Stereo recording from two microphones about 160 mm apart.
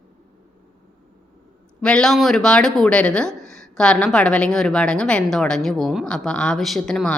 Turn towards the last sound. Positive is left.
turn(degrees=5)  # may be behind; listen again after turning